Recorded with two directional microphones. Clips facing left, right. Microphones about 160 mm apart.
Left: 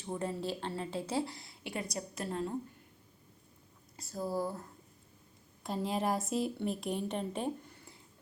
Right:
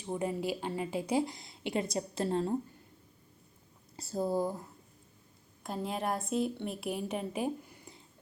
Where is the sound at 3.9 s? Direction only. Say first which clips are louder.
Right 4 dB; 30° right (ahead or behind); by 4.7 s 15° right (ahead or behind).